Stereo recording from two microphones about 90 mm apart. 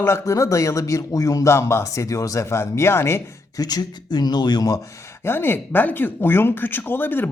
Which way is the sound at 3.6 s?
50° left (ahead or behind).